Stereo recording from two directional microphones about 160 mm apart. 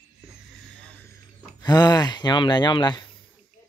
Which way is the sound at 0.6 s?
5° left (ahead or behind).